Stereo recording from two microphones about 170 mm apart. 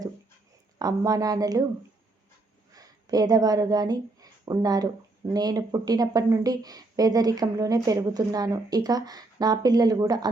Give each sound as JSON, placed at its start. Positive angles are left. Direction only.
{"t": 0.8, "sound": "a woman's voice", "side_deg": -20}
{"t": 2.7, "sound": "a woman's voice", "side_deg": -20}